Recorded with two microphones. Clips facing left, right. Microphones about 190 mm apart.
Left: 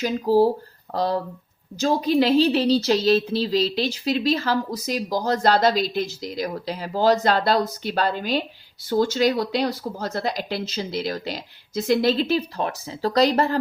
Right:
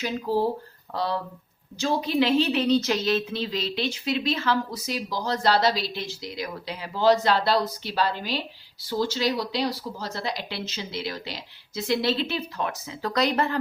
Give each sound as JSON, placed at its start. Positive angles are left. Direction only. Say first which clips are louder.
{"t": 0.0, "sound": "speech", "louder": "left 7 dB", "side_deg": 35}